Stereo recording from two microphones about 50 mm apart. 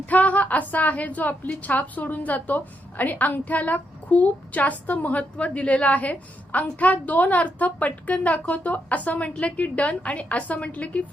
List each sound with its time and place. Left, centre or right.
0.0 s a woman's voice: left